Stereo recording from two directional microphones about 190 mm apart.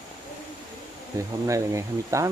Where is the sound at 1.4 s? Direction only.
15° right (ahead or behind).